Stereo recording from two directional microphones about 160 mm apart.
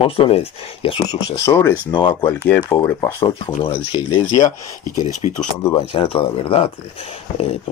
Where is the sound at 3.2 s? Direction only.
35° left (ahead or behind).